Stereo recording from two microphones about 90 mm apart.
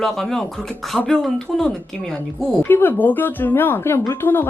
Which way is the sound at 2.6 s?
20° left (ahead or behind).